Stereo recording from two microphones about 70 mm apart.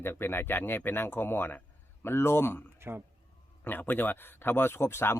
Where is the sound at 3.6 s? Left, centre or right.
Left.